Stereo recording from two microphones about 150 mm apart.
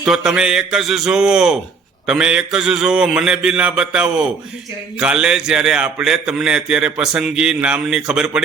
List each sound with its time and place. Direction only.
0.0 s a man's voice: centre (ahead or behind)